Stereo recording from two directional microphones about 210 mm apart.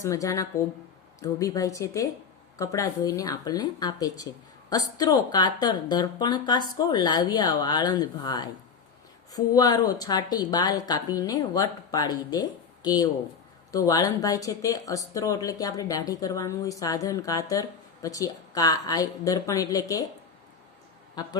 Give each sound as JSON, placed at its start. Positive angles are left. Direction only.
{"t": 0.0, "sound": "speech", "side_deg": 15}
{"t": 21.2, "sound": "speech", "side_deg": 20}